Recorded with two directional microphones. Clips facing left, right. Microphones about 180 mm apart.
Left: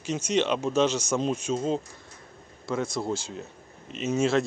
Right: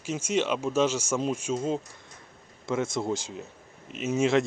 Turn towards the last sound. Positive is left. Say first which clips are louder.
# even
turn(degrees=-15)  # may be behind; listen again after turning